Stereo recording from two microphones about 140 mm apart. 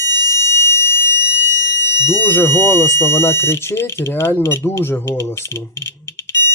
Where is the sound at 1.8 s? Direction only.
15° left (ahead or behind).